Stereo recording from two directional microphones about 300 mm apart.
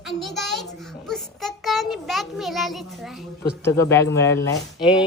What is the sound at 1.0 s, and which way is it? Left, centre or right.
A child's voice, centre.